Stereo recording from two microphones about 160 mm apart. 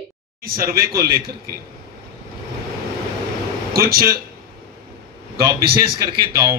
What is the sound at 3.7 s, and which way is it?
Speech, 70° right (ahead or behind).